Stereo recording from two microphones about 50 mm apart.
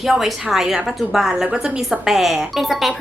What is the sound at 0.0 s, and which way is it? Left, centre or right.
A woman's voice, centre.